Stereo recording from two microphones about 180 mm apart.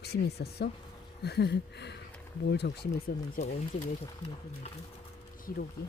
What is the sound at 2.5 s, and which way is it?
Speech, 65° left (ahead or behind).